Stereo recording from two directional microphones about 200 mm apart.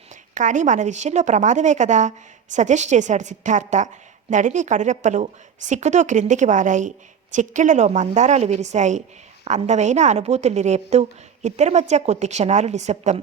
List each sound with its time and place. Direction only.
0.3 s a woman's voice: 40° right (ahead or behind)